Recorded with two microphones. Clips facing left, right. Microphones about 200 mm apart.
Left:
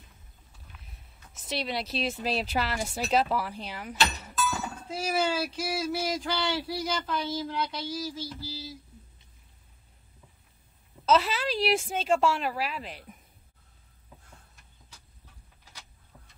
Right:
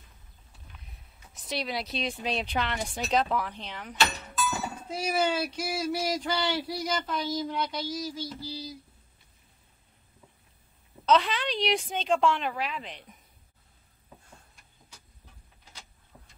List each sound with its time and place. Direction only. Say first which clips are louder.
1.3 s speech: left 1 dB; centre (ahead or behind)
4.5 s a sound: even; 15° right (ahead or behind)
4.9 s speech: right 1 dB; 5° left (ahead or behind)
11.1 s speech: even; 5° left (ahead or behind)